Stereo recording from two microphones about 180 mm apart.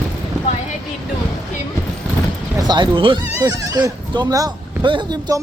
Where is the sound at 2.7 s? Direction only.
25° right (ahead or behind).